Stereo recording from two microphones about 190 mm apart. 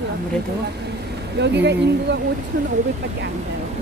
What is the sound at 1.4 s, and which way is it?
Speech, 65° right (ahead or behind).